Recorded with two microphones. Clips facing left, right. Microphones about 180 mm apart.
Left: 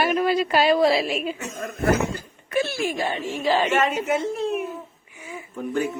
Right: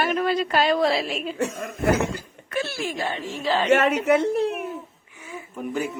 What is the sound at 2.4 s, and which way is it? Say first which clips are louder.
Speech: left 4 dB; 15° left (ahead or behind).